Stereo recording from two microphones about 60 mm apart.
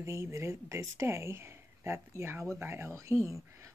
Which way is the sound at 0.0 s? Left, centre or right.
Right.